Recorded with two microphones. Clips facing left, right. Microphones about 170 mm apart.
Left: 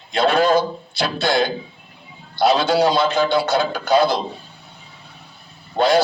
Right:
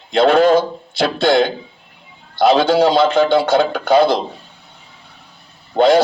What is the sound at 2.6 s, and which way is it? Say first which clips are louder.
A man's voice: right 4 dB; 55° right (ahead or behind).